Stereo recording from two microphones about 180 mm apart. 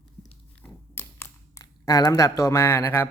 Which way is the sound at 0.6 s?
10° left (ahead or behind).